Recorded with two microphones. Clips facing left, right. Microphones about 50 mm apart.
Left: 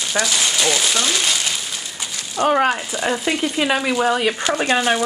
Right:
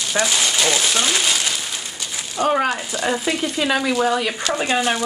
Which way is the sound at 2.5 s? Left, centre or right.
Centre.